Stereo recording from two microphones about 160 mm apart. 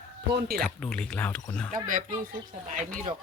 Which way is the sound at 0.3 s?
70° right (ahead or behind).